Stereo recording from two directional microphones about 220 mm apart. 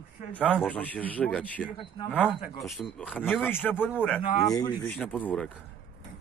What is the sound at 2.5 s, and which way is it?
Speech, centre (ahead or behind).